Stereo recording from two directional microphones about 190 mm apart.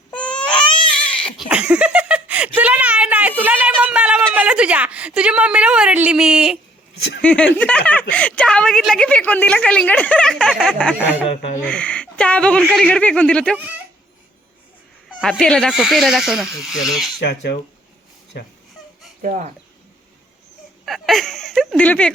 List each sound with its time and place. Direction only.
0.1 s baby cry: 5° left (ahead or behind)
0.9 s a sound: 5° left (ahead or behind)
7.2 s a woman's voice: 5° left (ahead or behind)
10.9 s speech: 10° right (ahead or behind)
11.6 s a woman's voice: 5° left (ahead or behind)
13.6 s a sound: 10° right (ahead or behind)
15.2 s a woman's voice: 5° left (ahead or behind)
17.2 s speech: 60° left (ahead or behind)
19.2 s speech: 40° right (ahead or behind)
20.8 s a woman's voice: centre (ahead or behind)